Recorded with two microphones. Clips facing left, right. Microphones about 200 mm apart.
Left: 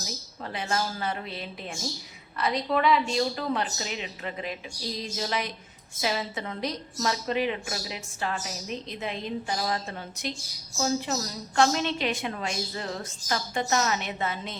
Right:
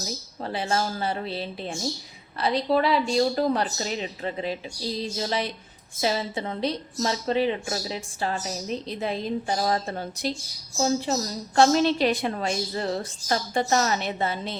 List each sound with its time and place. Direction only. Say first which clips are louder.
0.4 s a woman's voice: right 4 dB; 30° right (ahead or behind)